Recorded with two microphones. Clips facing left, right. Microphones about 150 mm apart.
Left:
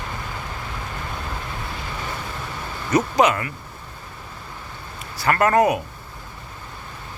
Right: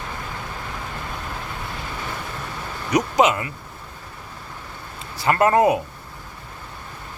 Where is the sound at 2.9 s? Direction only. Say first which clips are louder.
Even; 20° right (ahead or behind).